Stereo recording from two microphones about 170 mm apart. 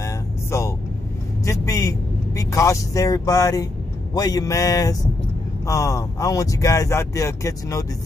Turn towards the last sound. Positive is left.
turn(degrees=20)  # may be behind; listen again after turning